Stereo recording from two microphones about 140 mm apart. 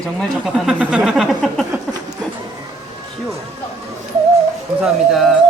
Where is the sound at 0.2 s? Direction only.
5° right (ahead or behind).